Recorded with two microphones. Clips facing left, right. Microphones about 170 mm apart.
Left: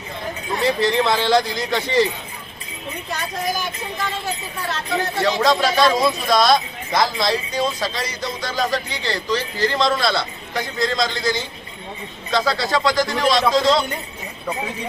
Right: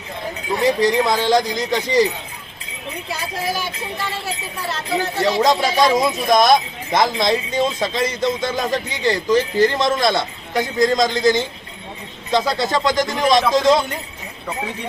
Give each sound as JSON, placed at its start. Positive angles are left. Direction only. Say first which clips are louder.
{"t": 0.6, "sound": "speech", "louder": "right 2 dB", "side_deg": -15}
{"t": 3.1, "sound": "speech", "louder": "even", "side_deg": -5}
{"t": 5.2, "sound": "speech", "louder": "right 1 dB", "side_deg": -20}